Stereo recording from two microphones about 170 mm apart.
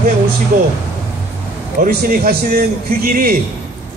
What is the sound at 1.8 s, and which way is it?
A man's voice, 60° right (ahead or behind).